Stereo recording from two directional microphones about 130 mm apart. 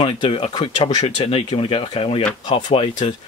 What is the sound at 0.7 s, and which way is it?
Speech, 60° left (ahead or behind).